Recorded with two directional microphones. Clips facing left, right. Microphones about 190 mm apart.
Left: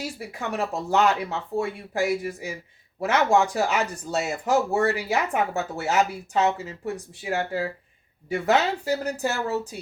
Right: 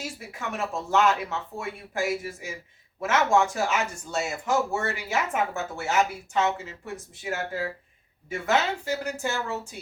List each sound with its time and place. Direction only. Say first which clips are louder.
0.3 s speech: left 3 dB; 35° left (ahead or behind)